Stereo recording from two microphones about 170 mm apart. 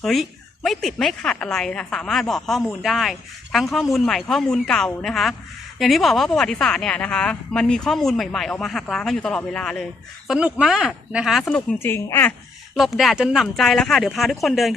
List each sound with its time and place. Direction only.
0.0 s speech: centre (ahead or behind)
12.7 s speech: centre (ahead or behind)